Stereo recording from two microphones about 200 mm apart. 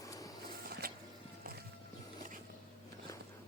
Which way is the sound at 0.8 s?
50° right (ahead or behind).